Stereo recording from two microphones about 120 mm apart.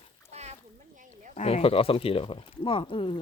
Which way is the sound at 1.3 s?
60° left (ahead or behind).